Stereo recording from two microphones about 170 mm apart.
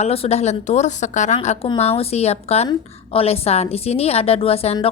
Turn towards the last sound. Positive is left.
turn(degrees=35)  # may be behind; listen again after turning